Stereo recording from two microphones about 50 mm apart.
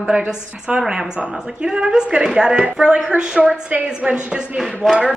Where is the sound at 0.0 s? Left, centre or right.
Centre.